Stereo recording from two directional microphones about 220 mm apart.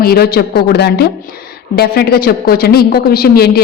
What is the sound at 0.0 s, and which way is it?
A woman's voice, 45° left (ahead or behind).